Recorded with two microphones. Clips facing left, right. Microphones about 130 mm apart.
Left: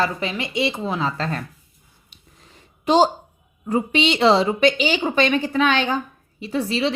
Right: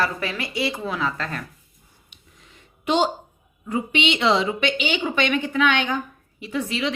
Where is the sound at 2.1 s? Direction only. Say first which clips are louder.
Left 2 dB; 35° left (ahead or behind).